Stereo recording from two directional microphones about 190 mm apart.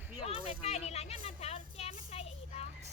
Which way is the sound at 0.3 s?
35° left (ahead or behind).